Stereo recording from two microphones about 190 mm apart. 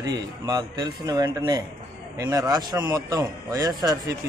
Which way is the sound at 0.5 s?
20° right (ahead or behind).